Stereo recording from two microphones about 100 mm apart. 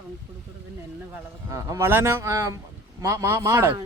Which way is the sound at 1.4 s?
30° right (ahead or behind).